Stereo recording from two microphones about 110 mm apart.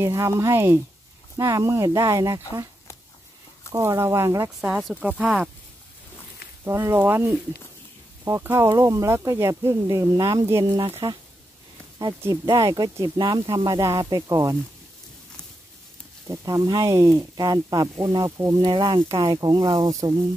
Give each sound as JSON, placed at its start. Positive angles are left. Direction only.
{"t": 0.0, "sound": "speech", "side_deg": -25}
{"t": 3.8, "sound": "speech", "side_deg": -25}
{"t": 4.6, "sound": "speech", "side_deg": -5}
{"t": 6.6, "sound": "speech", "side_deg": -25}
{"t": 12.4, "sound": "speech", "side_deg": -35}
{"t": 16.3, "sound": "speech", "side_deg": -30}
{"t": 18.7, "sound": "speech", "side_deg": -45}
{"t": 18.9, "sound": "speech", "side_deg": -30}
{"t": 19.2, "sound": "speech", "side_deg": -40}